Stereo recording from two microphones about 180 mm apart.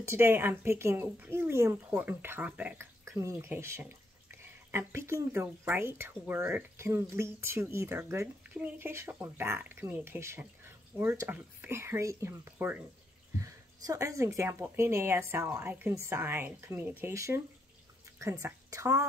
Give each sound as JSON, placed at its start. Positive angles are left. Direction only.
{"t": 0.0, "sound": "speech", "side_deg": -15}